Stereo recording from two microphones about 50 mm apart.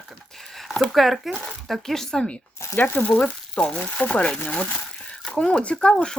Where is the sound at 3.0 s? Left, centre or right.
Left.